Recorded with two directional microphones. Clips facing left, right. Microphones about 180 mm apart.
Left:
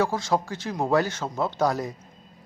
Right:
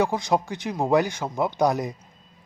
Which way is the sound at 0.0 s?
15° right (ahead or behind).